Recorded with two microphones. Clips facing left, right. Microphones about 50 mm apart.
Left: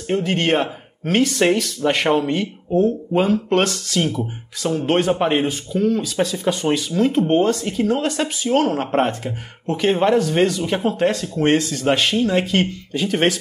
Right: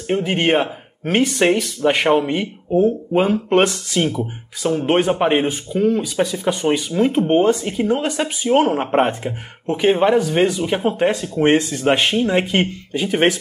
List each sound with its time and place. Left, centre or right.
0.1 s speech: centre